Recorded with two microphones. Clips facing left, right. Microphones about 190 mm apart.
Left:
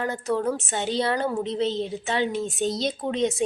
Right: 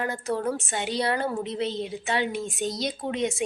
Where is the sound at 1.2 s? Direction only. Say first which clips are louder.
Left 3 dB; 20° left (ahead or behind).